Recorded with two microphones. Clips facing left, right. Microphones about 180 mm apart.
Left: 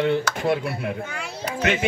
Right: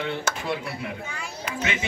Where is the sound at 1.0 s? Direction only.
70° left (ahead or behind).